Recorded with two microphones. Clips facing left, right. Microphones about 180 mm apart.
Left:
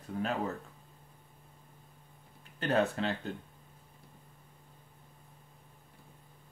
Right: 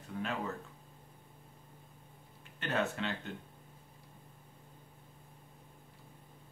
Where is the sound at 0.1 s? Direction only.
40° left (ahead or behind).